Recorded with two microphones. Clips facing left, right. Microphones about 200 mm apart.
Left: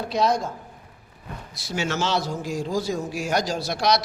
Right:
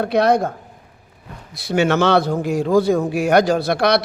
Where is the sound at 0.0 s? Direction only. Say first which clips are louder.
Right 7 dB; 60° right (ahead or behind).